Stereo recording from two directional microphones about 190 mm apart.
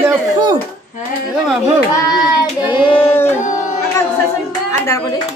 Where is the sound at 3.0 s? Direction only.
10° left (ahead or behind).